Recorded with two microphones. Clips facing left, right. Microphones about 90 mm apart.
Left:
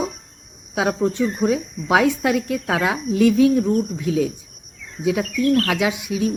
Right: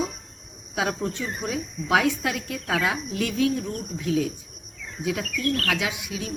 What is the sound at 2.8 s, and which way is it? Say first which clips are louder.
Speech: left 9 dB; 20° left (ahead or behind).